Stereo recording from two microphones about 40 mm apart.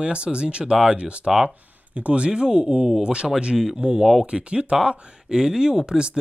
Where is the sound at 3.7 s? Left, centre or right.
Right.